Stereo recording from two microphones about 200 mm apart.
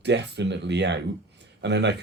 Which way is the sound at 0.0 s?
60° right (ahead or behind).